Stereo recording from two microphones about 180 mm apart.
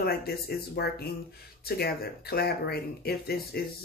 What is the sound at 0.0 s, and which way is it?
Speech, 60° left (ahead or behind).